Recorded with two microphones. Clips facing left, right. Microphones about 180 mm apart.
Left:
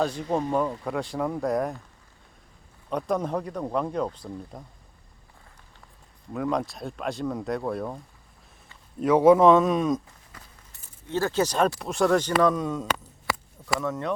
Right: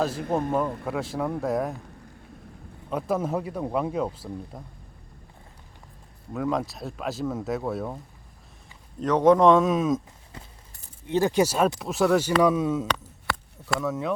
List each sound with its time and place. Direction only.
0.5 s speech: centre (ahead or behind)
2.9 s speech: 5° right (ahead or behind)
6.3 s speech: centre (ahead or behind)
9.0 s speech: 10° left (ahead or behind)
10.3 s a sound: 25° right (ahead or behind)
11.1 s speech: 15° right (ahead or behind)